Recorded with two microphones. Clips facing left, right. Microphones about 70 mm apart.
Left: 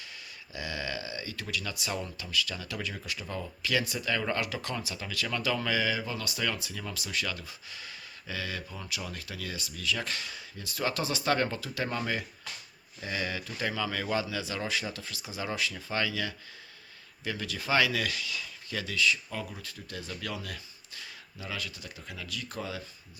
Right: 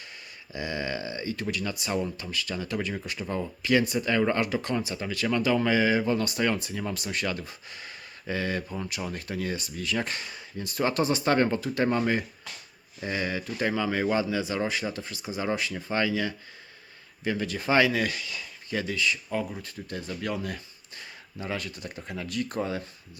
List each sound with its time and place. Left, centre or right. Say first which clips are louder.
0.5 s speech: right 4 dB; right